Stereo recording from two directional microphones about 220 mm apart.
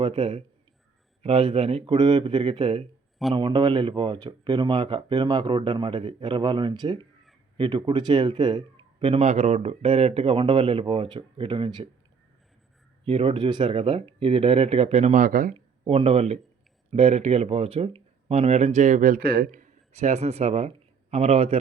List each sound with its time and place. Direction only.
0.0 s speech: 25° right (ahead or behind)
13.1 s speech: 25° right (ahead or behind)
15.5 s speech: 25° right (ahead or behind)